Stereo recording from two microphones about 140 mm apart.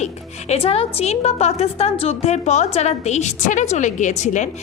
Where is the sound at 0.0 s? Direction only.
50° left (ahead or behind).